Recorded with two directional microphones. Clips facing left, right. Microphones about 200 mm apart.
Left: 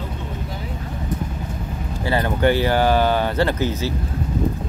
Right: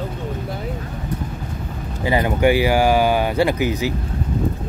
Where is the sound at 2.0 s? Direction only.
15° right (ahead or behind).